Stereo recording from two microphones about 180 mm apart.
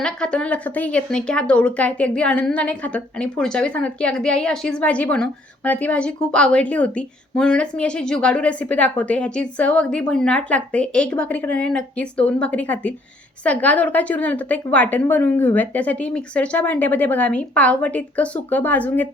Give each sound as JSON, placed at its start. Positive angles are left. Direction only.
{"t": 0.0, "sound": "speech", "side_deg": 5}